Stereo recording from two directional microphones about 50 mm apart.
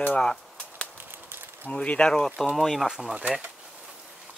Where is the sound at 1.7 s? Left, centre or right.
Left.